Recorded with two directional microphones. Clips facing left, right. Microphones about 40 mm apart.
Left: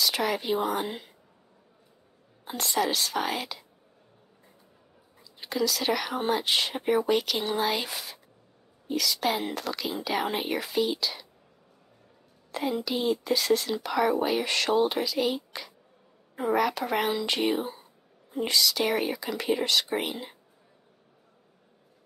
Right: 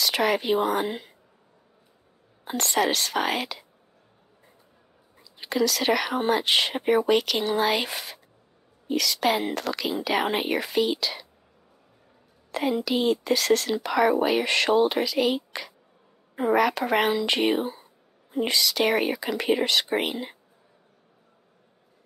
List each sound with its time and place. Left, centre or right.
0.0 s speech: right
2.4 s speech: right
5.4 s speech: right
6.9 s speech: right
7.9 s speech: right
8.8 s speech: right
12.4 s a sound: right
12.8 s speech: right
14.4 s speech: right
14.8 s speech: right
16.7 s speech: right
17.3 s speech: right